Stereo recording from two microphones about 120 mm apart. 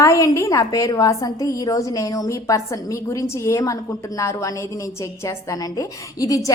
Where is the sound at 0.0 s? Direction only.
25° left (ahead or behind).